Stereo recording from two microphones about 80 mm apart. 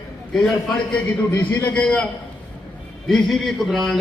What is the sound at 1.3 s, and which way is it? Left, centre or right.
Speech, left.